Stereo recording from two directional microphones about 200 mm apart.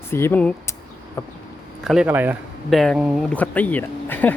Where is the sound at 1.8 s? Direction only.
5° right (ahead or behind).